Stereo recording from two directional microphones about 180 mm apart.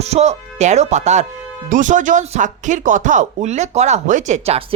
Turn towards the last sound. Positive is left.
turn(degrees=-35)  # may be behind; listen again after turning